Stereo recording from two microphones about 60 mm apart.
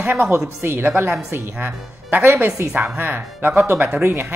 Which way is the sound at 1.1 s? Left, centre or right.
Right.